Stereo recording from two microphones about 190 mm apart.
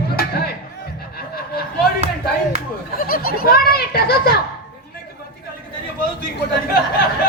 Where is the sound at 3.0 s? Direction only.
50° left (ahead or behind).